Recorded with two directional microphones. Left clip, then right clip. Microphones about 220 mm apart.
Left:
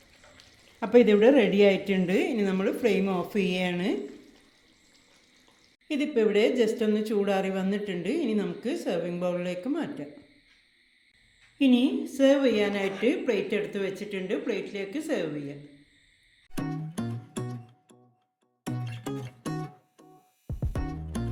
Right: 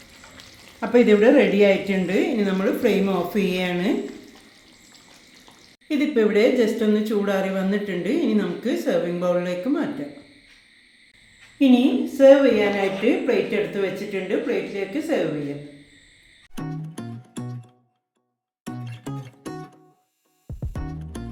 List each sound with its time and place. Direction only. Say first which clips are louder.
0.8 s speech: right 3 dB; 40° left (ahead or behind)
5.9 s speech: right 5 dB; 35° left (ahead or behind)
11.6 s a woman's voice: right 6 dB; 40° left (ahead or behind)
16.6 s music: even; centre (ahead or behind)
18.6 s music: right 1 dB; centre (ahead or behind)